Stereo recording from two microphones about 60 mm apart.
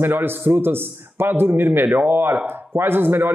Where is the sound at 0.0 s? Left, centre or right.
Right.